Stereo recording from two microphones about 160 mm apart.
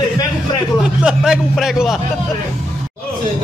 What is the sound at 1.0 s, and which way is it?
Speech, 5° right (ahead or behind).